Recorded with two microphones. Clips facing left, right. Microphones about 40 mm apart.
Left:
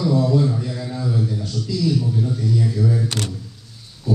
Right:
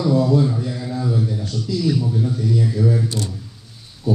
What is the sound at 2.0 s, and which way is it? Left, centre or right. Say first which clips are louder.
A man's voice: right 1 dB; centre.